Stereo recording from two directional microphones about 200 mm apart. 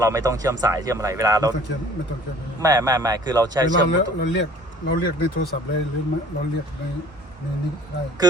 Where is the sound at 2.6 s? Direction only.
20° right (ahead or behind).